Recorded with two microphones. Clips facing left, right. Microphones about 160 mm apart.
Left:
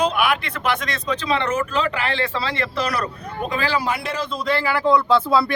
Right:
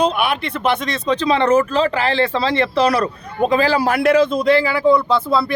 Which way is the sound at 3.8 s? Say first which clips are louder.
Right 11 dB; 65° right (ahead or behind).